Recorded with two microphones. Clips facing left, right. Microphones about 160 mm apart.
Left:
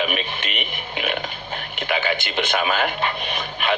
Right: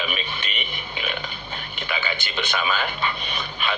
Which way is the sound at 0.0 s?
55° left (ahead or behind).